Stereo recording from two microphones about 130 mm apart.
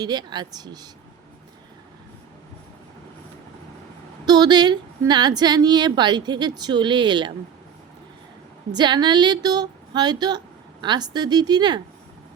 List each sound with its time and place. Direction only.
0.0 s a woman's voice: 30° right (ahead or behind)
4.3 s a woman's voice: 35° right (ahead or behind)
8.7 s a woman's voice: 35° right (ahead or behind)